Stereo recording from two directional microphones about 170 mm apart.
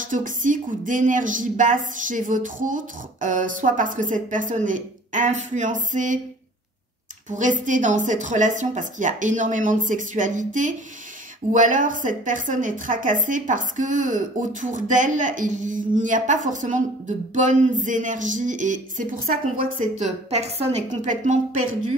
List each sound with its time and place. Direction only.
0.1 s a woman's voice: 50° right (ahead or behind)
7.2 s a woman's voice: 45° right (ahead or behind)
20.0 s a woman's voice: 40° right (ahead or behind)